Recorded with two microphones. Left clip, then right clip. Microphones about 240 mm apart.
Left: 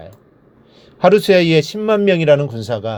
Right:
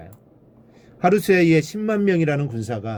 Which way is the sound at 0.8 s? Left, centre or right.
Centre.